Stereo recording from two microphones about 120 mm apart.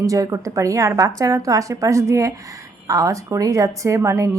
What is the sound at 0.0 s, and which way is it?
A woman's voice, 30° right (ahead or behind).